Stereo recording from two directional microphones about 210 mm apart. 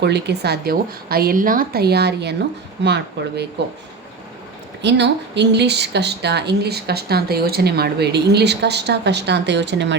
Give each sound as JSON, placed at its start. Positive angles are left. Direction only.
{"t": 0.0, "sound": "speech", "side_deg": -50}
{"t": 4.8, "sound": "speech", "side_deg": -55}